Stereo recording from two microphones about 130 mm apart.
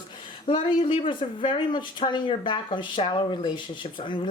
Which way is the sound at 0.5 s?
45° left (ahead or behind).